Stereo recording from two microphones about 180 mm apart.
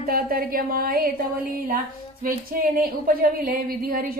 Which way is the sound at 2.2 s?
55° right (ahead or behind).